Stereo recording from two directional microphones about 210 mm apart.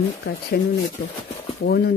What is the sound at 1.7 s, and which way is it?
Speech, 45° left (ahead or behind).